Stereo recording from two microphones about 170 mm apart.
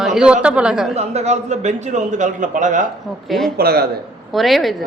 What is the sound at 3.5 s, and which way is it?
Speech, 65° right (ahead or behind).